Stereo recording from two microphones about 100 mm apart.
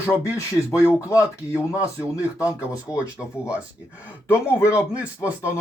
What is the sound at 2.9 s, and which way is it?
Speech, 15° right (ahead or behind).